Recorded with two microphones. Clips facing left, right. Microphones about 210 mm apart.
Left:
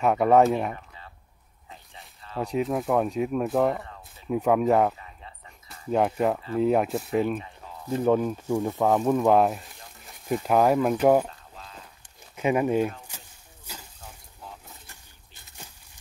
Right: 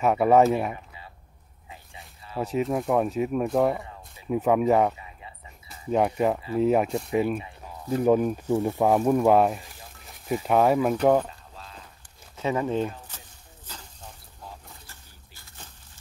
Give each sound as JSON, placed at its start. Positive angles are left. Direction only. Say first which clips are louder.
{"t": 0.0, "sound": "speech", "louder": "even", "side_deg": 0}
{"t": 4.9, "sound": "a sound", "louder": "right 1 dB", "side_deg": -10}
{"t": 5.9, "sound": "speech", "louder": "even", "side_deg": 0}
{"t": 7.3, "sound": "speech", "louder": "right 1 dB", "side_deg": -10}
{"t": 12.4, "sound": "speech", "louder": "left 3 dB", "side_deg": 15}
{"t": 13.7, "sound": "a sound", "louder": "even", "side_deg": 10}